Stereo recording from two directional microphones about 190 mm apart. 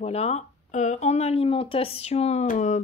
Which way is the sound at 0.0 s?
35° left (ahead or behind).